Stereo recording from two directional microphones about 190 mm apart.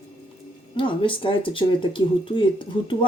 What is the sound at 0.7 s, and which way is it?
Speech, 25° left (ahead or behind).